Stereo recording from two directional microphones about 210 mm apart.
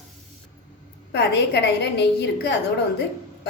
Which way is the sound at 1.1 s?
50° left (ahead or behind).